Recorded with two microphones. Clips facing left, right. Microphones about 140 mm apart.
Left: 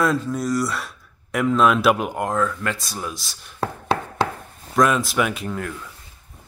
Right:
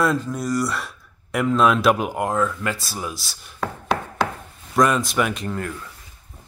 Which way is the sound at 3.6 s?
30° left (ahead or behind).